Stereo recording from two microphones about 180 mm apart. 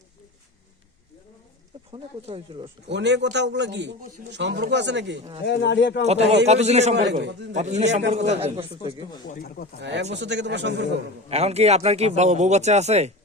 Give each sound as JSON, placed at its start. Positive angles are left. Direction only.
{"t": 1.9, "sound": "speech", "side_deg": -30}
{"t": 2.8, "sound": "a man's voice", "side_deg": -75}
{"t": 5.4, "sound": "speech", "side_deg": 70}
{"t": 6.1, "sound": "speech", "side_deg": -35}
{"t": 7.1, "sound": "a man's voice", "side_deg": -80}
{"t": 7.5, "sound": "speech", "side_deg": -40}
{"t": 9.3, "sound": "speech", "side_deg": 60}
{"t": 9.8, "sound": "a man's voice", "side_deg": -75}
{"t": 11.3, "sound": "speech", "side_deg": -35}